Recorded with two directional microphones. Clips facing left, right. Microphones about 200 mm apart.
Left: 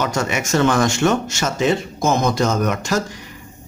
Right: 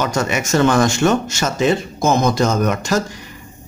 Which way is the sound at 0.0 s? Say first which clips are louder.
Right 2 dB; 40° right (ahead or behind).